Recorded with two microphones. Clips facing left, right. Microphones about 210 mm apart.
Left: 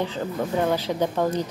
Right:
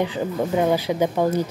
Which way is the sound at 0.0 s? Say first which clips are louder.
Right 3 dB; 15° right (ahead or behind).